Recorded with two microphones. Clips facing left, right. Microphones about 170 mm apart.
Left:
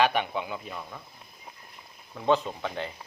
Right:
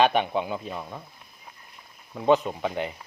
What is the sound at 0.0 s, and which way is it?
Speech, 20° right (ahead or behind).